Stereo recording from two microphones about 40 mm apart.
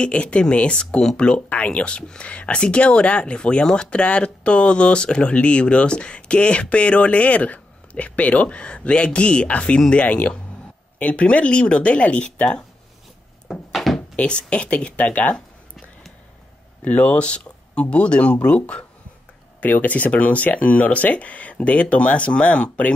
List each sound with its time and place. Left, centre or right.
0.0 s speech: left
1.5 s speech: left
13.7 s drawer open or close: centre
14.1 s speech: left
16.8 s speech: left
19.6 s speech: left